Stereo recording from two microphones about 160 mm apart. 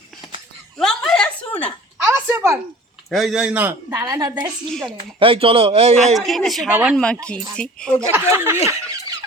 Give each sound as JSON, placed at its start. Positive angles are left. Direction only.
{"t": 0.8, "sound": "a sound", "side_deg": 5}
{"t": 2.0, "sound": "a sound", "side_deg": -15}
{"t": 3.1, "sound": "speech", "side_deg": 0}
{"t": 4.7, "sound": "speech", "side_deg": 5}
{"t": 5.2, "sound": "a man's voice", "side_deg": -35}
{"t": 6.1, "sound": "speech", "side_deg": 0}
{"t": 8.1, "sound": "speech", "side_deg": -15}
{"t": 8.5, "sound": "speech", "side_deg": 40}